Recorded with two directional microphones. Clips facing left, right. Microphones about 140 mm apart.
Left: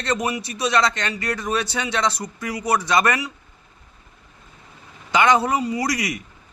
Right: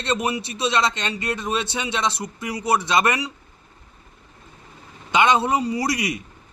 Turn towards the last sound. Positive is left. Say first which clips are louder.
# even
turn(degrees=-25)  # may be behind; listen again after turning